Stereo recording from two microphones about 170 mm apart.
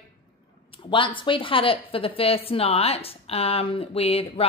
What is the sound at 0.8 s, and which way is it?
A woman's voice, 30° left (ahead or behind).